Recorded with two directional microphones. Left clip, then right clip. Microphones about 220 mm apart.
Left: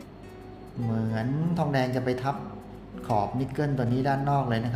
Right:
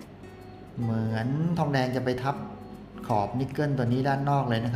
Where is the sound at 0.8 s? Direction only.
5° right (ahead or behind).